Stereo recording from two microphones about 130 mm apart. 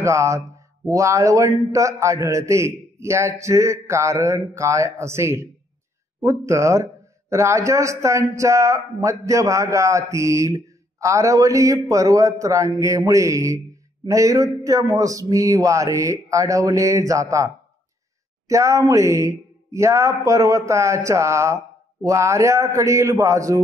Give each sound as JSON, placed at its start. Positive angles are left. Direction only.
{"t": 0.0, "sound": "a man's voice", "side_deg": -25}
{"t": 18.5, "sound": "a man's voice", "side_deg": -25}